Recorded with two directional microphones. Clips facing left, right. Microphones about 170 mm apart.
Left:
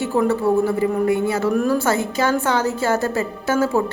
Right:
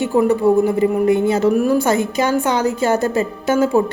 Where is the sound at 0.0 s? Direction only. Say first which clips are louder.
Right 4 dB; 15° right (ahead or behind).